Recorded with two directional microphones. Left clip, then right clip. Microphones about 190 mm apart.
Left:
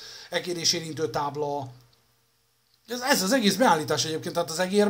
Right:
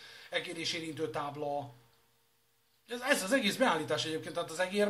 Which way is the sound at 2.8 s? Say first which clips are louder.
Left 7 dB; 60° left (ahead or behind).